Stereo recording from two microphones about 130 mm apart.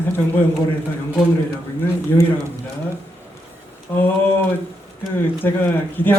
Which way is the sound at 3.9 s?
15° left (ahead or behind).